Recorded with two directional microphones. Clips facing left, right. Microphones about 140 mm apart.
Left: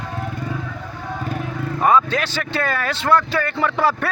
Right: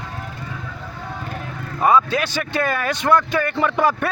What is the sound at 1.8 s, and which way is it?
A man's voice, 10° right (ahead or behind).